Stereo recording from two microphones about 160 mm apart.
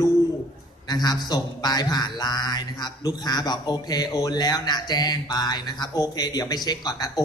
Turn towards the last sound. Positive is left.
turn(degrees=25)  # may be behind; listen again after turning